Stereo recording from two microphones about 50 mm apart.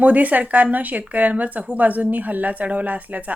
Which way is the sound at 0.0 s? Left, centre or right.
Right.